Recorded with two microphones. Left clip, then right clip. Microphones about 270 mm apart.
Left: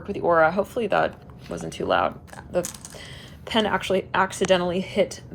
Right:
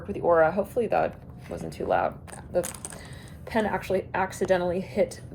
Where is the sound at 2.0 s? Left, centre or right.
Left.